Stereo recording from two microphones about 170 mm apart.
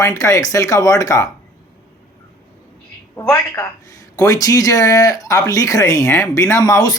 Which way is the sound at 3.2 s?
15° left (ahead or behind).